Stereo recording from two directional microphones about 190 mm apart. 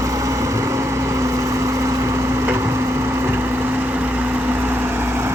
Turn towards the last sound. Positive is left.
turn(degrees=-10)  # may be behind; listen again after turning